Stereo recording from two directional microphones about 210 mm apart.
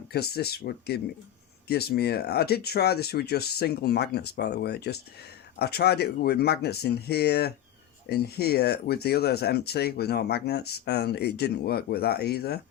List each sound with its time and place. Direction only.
0.1 s speech: 50° left (ahead or behind)